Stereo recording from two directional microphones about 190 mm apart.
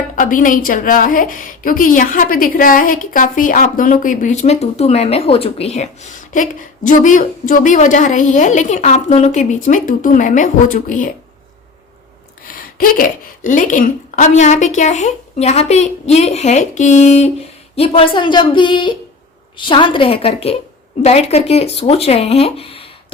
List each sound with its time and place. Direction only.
0.2 s a woman's voice: 45° left (ahead or behind)
12.5 s a woman's voice: 50° left (ahead or behind); by 23.1 s 30° left (ahead or behind)